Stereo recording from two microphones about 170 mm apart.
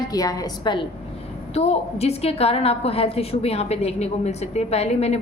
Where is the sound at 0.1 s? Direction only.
20° left (ahead or behind).